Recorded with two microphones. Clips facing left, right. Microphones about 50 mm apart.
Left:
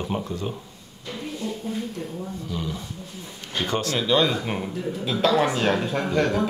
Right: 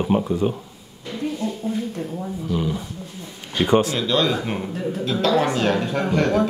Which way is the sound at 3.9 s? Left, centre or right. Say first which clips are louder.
Right 1 dB; centre.